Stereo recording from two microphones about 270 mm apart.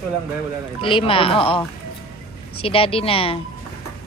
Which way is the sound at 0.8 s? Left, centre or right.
Centre.